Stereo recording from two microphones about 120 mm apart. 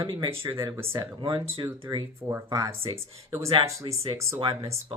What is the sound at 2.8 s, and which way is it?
Speech, 50° right (ahead or behind).